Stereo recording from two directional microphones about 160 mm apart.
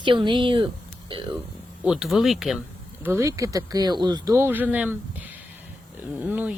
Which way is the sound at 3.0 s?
20° right (ahead or behind).